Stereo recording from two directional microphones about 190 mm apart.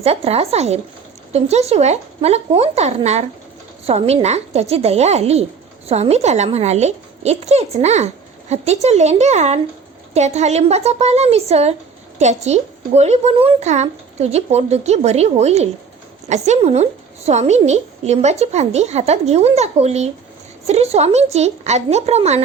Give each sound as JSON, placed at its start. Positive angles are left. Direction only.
{"t": 0.0, "sound": "a woman's voice", "side_deg": -30}